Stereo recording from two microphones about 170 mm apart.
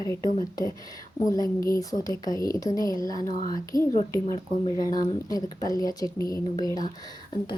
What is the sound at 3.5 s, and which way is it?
Speech, 20° left (ahead or behind).